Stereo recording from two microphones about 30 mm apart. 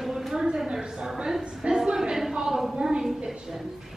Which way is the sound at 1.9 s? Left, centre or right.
Right.